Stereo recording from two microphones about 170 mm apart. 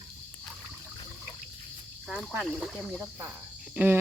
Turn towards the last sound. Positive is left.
turn(degrees=-10)  # may be behind; listen again after turning